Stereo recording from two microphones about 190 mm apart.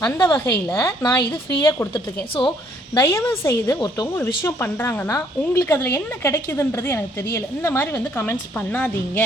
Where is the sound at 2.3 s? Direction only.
25° left (ahead or behind).